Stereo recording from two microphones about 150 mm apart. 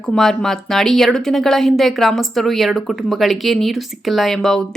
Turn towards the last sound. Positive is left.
turn(degrees=0)  # may be behind; listen again after turning